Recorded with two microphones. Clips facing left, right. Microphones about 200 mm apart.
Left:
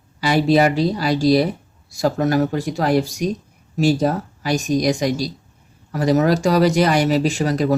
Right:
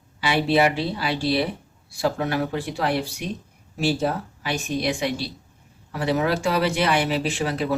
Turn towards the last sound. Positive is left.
turn(degrees=40)  # may be behind; listen again after turning